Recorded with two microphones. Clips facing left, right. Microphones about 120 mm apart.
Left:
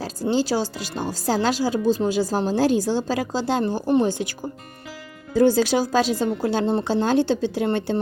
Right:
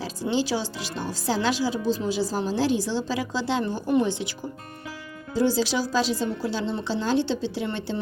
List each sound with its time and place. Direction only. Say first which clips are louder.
0.0 s speech: left 3 dB; 40° left (ahead or behind)